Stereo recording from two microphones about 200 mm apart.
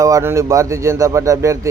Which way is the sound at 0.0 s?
15° right (ahead or behind).